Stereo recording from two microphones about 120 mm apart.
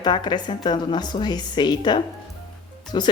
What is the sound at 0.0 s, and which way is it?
A woman's voice, 40° left (ahead or behind).